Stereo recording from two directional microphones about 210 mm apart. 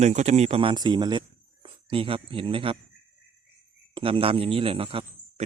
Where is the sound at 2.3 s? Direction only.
25° right (ahead or behind).